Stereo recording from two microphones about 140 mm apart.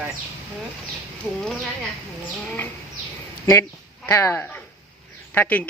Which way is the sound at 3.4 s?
20° left (ahead or behind).